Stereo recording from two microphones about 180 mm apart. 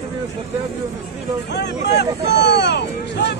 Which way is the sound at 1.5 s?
70° left (ahead or behind).